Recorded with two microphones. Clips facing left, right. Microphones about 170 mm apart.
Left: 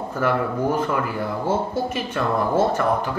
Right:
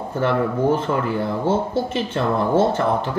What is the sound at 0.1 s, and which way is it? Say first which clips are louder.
Speech: right 2 dB; 25° right (ahead or behind).